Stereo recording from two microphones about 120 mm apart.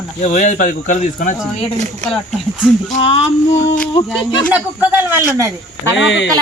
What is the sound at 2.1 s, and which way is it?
Speech, centre (ahead or behind).